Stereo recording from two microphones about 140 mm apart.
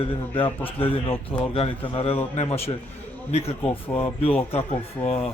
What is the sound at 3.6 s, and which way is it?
Speech, 15° left (ahead or behind).